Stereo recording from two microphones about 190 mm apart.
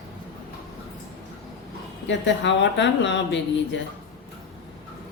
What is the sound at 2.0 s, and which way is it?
A woman's voice, 70° left (ahead or behind).